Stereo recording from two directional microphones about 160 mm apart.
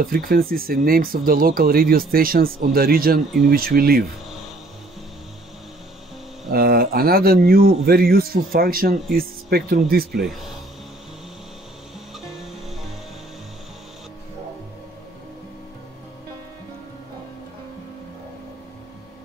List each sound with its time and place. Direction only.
0.0 s speech: 65° right (ahead or behind)
6.5 s speech: 70° right (ahead or behind)
12.3 s music: centre (ahead or behind)